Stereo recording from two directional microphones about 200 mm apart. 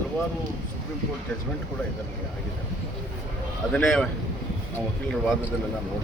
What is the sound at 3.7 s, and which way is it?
Speech, 5° left (ahead or behind).